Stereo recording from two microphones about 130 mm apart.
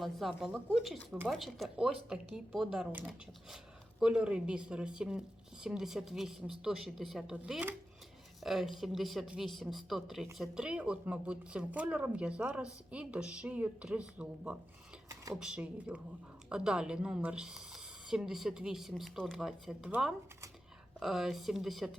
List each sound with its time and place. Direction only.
0.0 s a woman's voice: centre (ahead or behind)
15.1 s a sound: 25° right (ahead or behind)
15.4 s a woman's voice: 10° right (ahead or behind)